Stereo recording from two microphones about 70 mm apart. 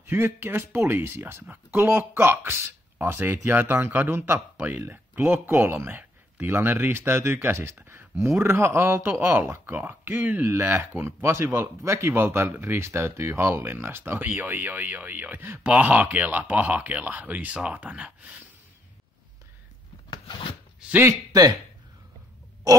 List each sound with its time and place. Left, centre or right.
0.0 s speech: right
10.5 s speech: right
15.7 s speech: centre
21.3 s speech: right